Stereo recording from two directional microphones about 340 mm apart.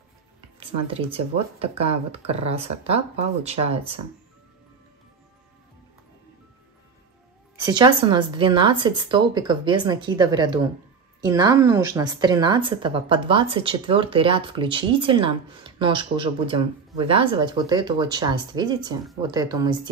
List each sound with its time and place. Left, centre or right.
0.6 s a woman's voice: centre
7.6 s a woman's voice: centre